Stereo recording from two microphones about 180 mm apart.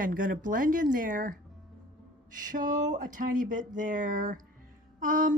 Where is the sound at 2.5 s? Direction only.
45° right (ahead or behind).